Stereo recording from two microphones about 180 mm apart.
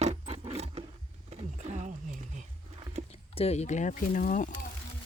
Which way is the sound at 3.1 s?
35° left (ahead or behind).